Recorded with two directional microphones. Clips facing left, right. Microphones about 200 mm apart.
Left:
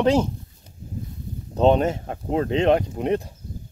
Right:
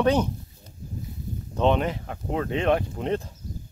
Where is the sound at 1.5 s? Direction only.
35° left (ahead or behind).